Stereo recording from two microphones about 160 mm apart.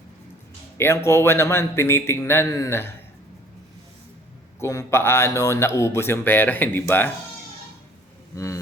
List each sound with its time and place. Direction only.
0.8 s speech: 15° left (ahead or behind)
4.6 s speech: 20° left (ahead or behind)